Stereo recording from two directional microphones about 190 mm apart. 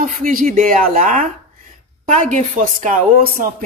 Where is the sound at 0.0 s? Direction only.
45° right (ahead or behind).